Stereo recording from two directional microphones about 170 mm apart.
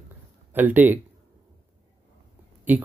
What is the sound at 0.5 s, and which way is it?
Speech, 10° right (ahead or behind).